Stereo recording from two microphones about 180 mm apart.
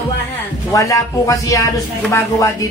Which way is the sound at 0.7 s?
20° left (ahead or behind).